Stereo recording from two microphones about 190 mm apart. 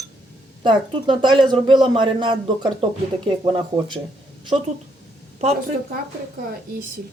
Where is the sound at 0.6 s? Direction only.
25° right (ahead or behind).